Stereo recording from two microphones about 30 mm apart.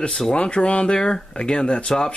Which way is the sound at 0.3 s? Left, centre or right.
Left.